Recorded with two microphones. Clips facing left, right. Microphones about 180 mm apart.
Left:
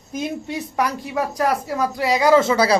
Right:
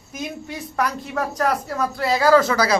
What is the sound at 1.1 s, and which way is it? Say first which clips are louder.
Speech: left 1 dB; 10° left (ahead or behind).